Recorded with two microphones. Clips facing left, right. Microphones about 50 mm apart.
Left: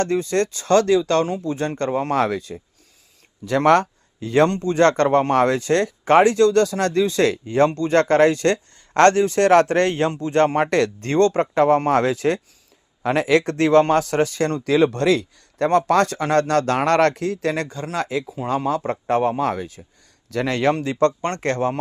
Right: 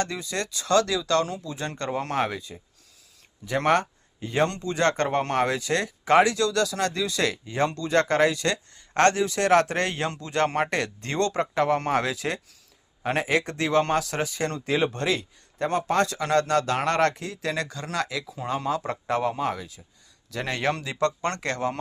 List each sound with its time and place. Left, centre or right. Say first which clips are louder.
0.0 s speech: left 9 dB; left
2.1 s speech: left 6 dB; left
3.6 s speech: left 7 dB; left
4.4 s speech: left 6 dB; left
10.7 s speech: left 8 dB; left
11.1 s speech: left 7 dB; left
13.0 s speech: left 7 dB; left
14.6 s speech: left 8 dB; left
16.0 s speech: left 4 dB; left
17.9 s speech: left 5 dB; left
19.4 s speech: left 6 dB; left
21.2 s speech: left 3 dB; left
21.4 s speech: left 9 dB; left